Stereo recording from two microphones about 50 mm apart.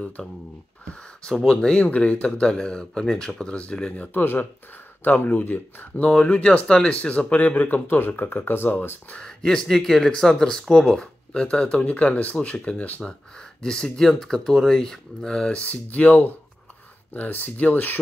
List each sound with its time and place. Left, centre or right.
0.2 s speech: centre
0.8 s a sound: left
1.3 s speech: centre
1.8 s speech: left
4.0 s speech: left
5.9 s speech: left
9.1 s speech: centre; by 13.0 s left
13.0 s speech: centre
15.7 s speech: left